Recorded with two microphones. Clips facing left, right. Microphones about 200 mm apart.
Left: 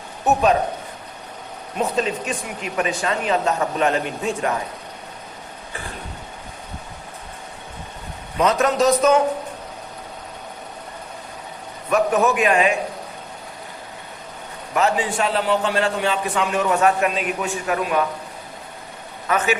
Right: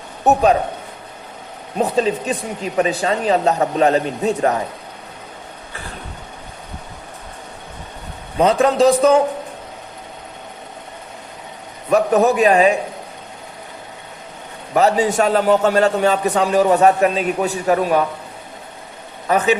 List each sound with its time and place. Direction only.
1.8 s a man's voice: 35° right (ahead or behind)
8.4 s a man's voice: 30° right (ahead or behind)
11.9 s a man's voice: 35° right (ahead or behind)
14.7 s a man's voice: 40° right (ahead or behind)
19.3 s a man's voice: 35° right (ahead or behind)